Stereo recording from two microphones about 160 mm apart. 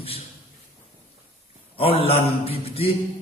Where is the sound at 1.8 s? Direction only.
35° left (ahead or behind).